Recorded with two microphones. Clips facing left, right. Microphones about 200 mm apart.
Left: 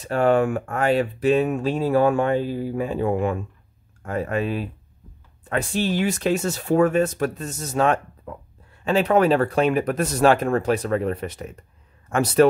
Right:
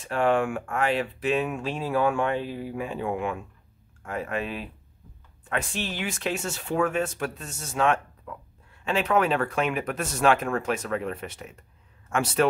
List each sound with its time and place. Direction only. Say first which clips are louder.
0.0 s speech: left 5 dB; 40° left (ahead or behind)